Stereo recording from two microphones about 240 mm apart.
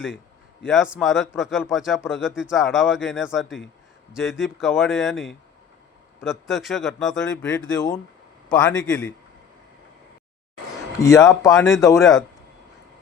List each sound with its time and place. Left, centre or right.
0.6 s speech: centre
7.8 s speech: centre
8.4 s speech: centre
11.0 s speech: centre